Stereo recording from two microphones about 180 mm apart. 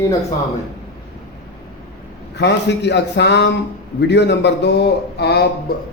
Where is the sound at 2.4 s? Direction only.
70° left (ahead or behind).